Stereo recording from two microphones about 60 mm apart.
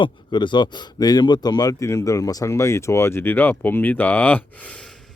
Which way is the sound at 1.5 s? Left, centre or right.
Left.